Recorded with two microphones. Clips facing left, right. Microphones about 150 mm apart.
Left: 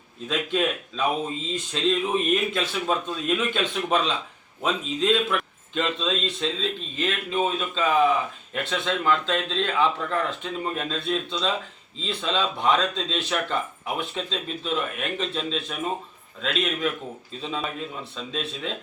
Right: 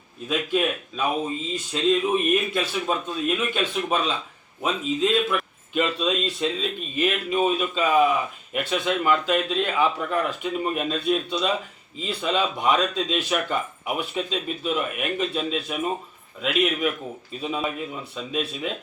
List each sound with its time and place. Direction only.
0.3 s speech: 10° right (ahead or behind)